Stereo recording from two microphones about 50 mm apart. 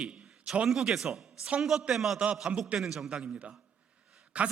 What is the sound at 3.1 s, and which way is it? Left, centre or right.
A man's voice, right.